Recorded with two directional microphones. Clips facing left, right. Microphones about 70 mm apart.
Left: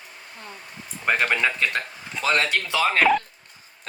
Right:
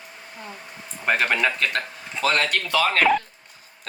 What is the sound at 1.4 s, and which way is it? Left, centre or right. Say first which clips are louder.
Speech: even; centre.